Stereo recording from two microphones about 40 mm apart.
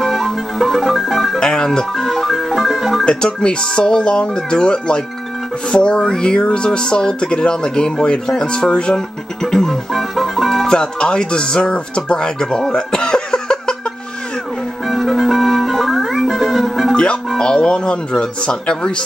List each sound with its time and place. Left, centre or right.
0.0 s music: centre
1.4 s speech: centre
2.5 s music: centre
3.1 s speech: left
8.9 s music: centre
9.9 s music: centre
10.7 s speech: centre
14.9 s music: centre
16.9 s music: left
17.4 s speech: centre